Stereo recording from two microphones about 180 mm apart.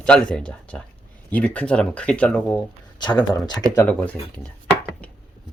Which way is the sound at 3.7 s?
10° left (ahead or behind).